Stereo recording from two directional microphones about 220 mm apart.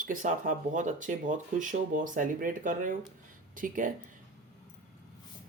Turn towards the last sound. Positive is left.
turn(degrees=-35)  # may be behind; listen again after turning